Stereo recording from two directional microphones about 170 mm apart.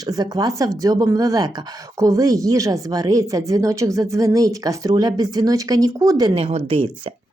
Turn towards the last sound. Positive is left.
turn(degrees=-30)  # may be behind; listen again after turning